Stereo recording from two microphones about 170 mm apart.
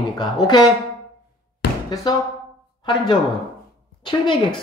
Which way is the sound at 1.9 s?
25° left (ahead or behind).